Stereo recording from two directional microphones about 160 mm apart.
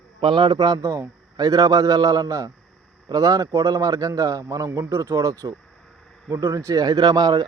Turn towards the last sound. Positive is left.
turn(degrees=-25)  # may be behind; listen again after turning